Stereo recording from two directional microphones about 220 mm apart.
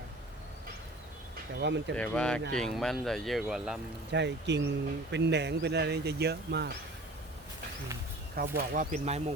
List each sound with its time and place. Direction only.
1.5 s speech: 50° right (ahead or behind)
2.0 s speech: 5° left (ahead or behind)
4.1 s speech: 50° right (ahead or behind)
8.4 s speech: 40° right (ahead or behind)